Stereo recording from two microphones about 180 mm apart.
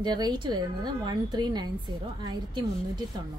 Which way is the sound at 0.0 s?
25° right (ahead or behind).